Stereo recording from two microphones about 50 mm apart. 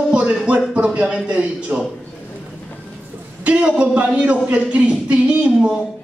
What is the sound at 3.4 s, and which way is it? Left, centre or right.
A man's voice, right.